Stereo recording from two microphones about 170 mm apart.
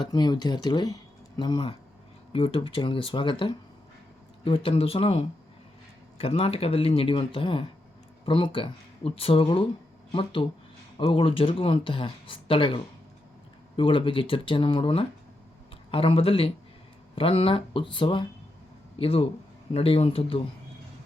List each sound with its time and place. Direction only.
0.0 s speech: 25° left (ahead or behind)